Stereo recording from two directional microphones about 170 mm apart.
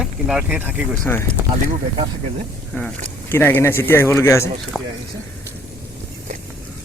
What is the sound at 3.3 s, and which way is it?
Speech, 15° left (ahead or behind).